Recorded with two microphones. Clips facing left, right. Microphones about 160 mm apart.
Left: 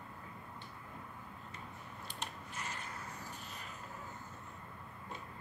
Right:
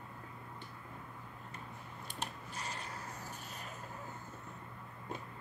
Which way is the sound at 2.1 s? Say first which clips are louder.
Right 2 dB; 35° right (ahead or behind).